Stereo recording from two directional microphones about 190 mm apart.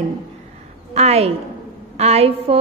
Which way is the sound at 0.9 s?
35° right (ahead or behind).